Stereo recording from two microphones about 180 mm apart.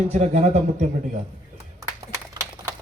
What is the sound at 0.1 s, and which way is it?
Speech, 40° right (ahead or behind).